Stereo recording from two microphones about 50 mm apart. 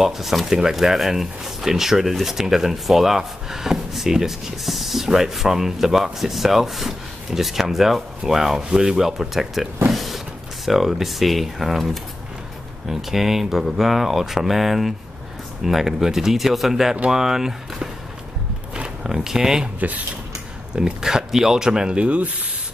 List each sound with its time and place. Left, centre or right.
0.0 s speech: centre
19.0 s speech: centre
19.8 s speech: right
20.7 s speech: centre